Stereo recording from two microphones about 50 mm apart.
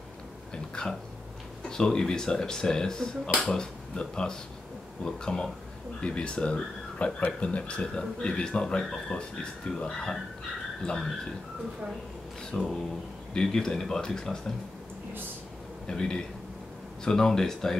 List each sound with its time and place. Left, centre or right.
0.8 s a sound: centre
1.7 s speech: centre
12.5 s speech: left
15.9 s speech: centre